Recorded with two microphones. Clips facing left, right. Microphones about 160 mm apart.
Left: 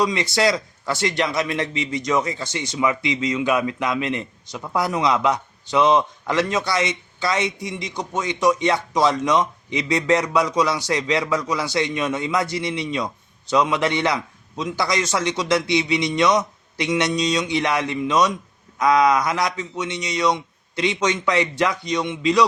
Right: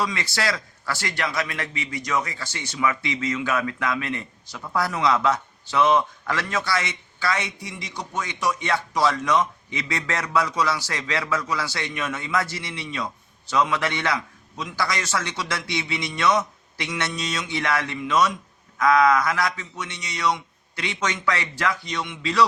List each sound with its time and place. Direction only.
0.0 s a man's voice: 20° left (ahead or behind)